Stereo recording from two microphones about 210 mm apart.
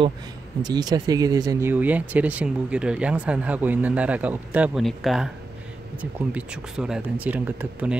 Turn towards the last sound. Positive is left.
turn(degrees=-5)  # may be behind; listen again after turning